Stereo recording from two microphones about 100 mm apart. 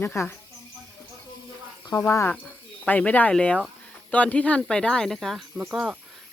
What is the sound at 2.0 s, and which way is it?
Speech, 20° left (ahead or behind).